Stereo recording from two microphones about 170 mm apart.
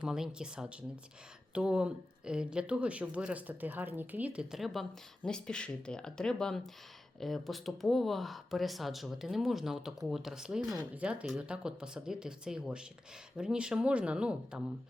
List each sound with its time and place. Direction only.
0.0 s speech: 5° right (ahead or behind)